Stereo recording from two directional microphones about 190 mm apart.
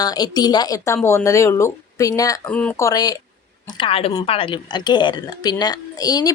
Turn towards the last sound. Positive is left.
turn(degrees=20)  # may be behind; listen again after turning